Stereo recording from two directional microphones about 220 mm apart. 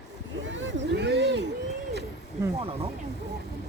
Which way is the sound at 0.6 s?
55° right (ahead or behind).